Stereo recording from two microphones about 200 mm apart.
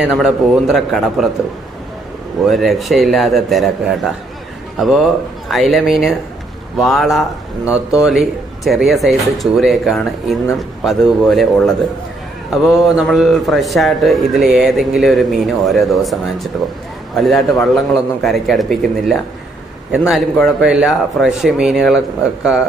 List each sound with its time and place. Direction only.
0.0 s a man's voice: centre (ahead or behind)
2.4 s a man's voice: centre (ahead or behind)